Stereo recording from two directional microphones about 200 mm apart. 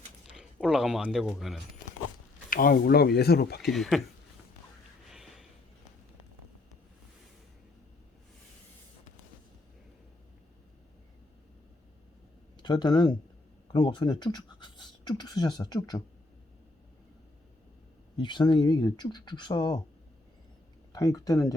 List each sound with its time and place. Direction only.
0.3 s speech: 5° right (ahead or behind)
2.5 s speech: 45° left (ahead or behind)
3.6 s speech: centre (ahead or behind)
5.0 s a sound: centre (ahead or behind)
12.6 s speech: 20° left (ahead or behind)
18.2 s speech: 20° left (ahead or behind)
20.9 s speech: 15° left (ahead or behind)